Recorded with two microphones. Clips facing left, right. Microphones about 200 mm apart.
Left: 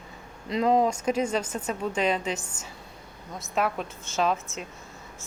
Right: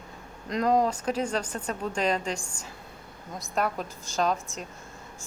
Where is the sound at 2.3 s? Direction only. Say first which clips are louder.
Even; 5° left (ahead or behind).